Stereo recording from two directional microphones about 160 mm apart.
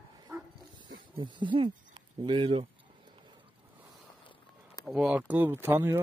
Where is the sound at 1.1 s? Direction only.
30° right (ahead or behind).